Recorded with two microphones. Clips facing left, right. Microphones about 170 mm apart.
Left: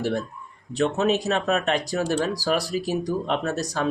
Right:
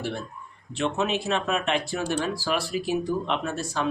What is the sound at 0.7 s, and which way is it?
Speech, 40° left (ahead or behind).